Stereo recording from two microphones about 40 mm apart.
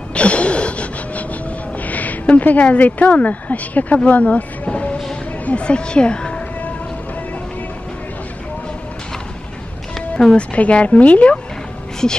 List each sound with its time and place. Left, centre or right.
0.1 s a sound: left
1.9 s speech: left
10.1 s a woman's voice: left